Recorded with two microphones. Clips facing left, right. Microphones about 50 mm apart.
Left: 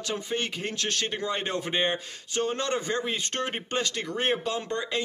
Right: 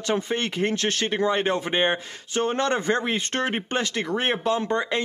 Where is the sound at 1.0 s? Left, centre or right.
Right.